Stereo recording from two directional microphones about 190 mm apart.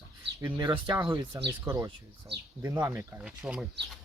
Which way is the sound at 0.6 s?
25° right (ahead or behind).